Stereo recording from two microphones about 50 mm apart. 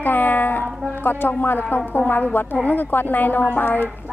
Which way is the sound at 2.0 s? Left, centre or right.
Left.